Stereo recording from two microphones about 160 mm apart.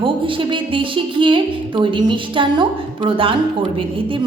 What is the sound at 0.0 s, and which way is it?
Music, 35° right (ahead or behind).